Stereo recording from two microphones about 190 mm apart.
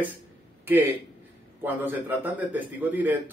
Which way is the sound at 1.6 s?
10° right (ahead or behind).